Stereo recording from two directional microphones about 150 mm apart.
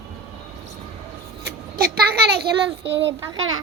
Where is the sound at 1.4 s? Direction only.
85° right.